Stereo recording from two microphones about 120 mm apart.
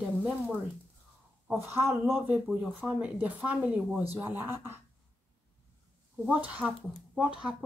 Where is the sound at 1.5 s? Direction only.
15° right (ahead or behind).